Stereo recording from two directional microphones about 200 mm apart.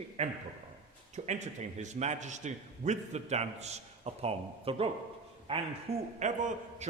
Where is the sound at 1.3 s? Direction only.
35° right (ahead or behind).